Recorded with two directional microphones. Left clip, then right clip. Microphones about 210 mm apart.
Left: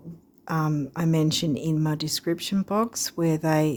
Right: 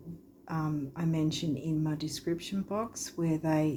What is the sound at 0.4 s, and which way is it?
Speech, 55° left (ahead or behind).